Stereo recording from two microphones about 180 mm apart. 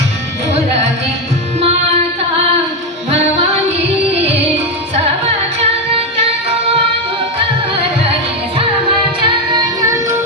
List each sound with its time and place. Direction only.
9.2 s child singing: 20° right (ahead or behind)